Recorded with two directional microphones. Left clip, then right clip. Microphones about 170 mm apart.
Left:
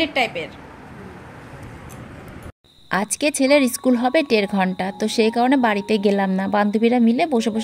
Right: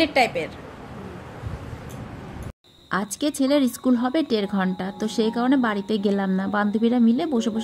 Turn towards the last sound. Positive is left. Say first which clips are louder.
# left 5 dB
turn(degrees=35)  # may be behind; listen again after turning